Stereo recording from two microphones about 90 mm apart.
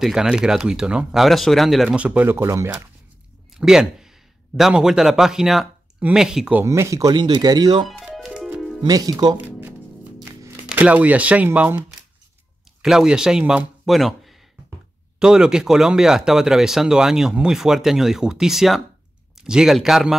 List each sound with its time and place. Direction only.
0.0 s speech: 5° right (ahead or behind)
1.9 s speech: 15° right (ahead or behind)
3.5 s speech: 5° right (ahead or behind)
5.9 s speech: 15° right (ahead or behind)
6.2 s speech: 5° right (ahead or behind)
6.6 s speech: 35° right (ahead or behind)
7.2 s speech: 55° right (ahead or behind)
7.8 s music: centre (ahead or behind)
8.8 s speech: 40° right (ahead or behind)
9.1 s speech: 50° right (ahead or behind)
10.8 s speech: 15° right (ahead or behind)
12.8 s speech: 5° right (ahead or behind)